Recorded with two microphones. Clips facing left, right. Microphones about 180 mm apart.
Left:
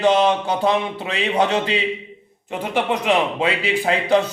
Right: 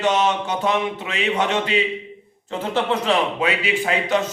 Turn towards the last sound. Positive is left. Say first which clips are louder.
# left 3 dB
turn(degrees=30)  # may be behind; listen again after turning